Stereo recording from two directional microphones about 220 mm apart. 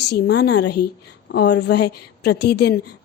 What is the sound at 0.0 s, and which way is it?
A woman's voice, 50° left (ahead or behind).